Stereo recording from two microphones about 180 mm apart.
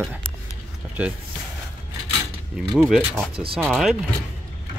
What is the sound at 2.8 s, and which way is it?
Speech, 5° right (ahead or behind).